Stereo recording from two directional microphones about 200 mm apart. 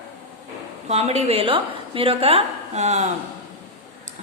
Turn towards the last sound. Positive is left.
turn(degrees=-35)  # may be behind; listen again after turning